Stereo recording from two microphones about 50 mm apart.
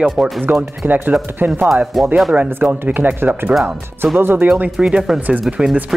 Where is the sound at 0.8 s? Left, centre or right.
Right.